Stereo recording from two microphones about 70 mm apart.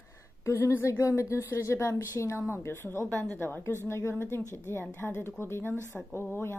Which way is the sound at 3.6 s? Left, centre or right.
Left.